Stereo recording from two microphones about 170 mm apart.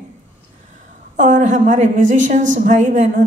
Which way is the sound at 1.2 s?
45° right (ahead or behind).